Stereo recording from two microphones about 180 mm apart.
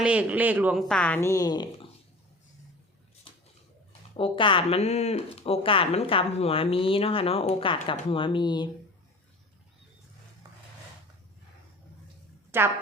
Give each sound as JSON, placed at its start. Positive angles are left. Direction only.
{"t": 0.0, "sound": "speech", "side_deg": -5}
{"t": 4.2, "sound": "speech", "side_deg": 30}
{"t": 12.5, "sound": "speech", "side_deg": -10}